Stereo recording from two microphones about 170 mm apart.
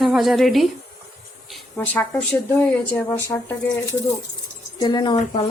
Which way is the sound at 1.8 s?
5° left (ahead or behind).